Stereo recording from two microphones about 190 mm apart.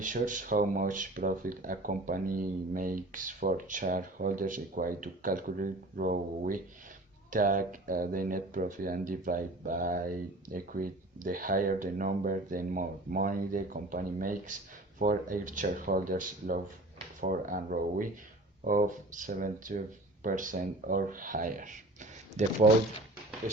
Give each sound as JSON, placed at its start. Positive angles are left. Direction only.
{"t": 0.0, "sound": "speech", "side_deg": -45}